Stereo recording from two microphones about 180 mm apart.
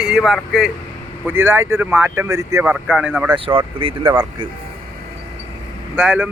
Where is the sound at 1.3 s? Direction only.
15° right (ahead or behind).